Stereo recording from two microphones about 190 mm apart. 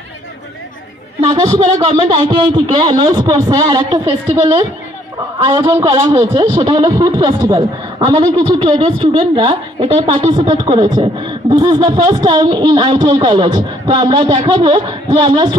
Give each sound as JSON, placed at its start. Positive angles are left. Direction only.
{"t": 1.2, "sound": "a man's voice", "side_deg": -30}
{"t": 5.7, "sound": "a man's voice", "side_deg": -15}